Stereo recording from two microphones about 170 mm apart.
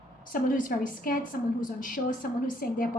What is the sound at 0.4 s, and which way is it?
A woman's voice, 55° left (ahead or behind).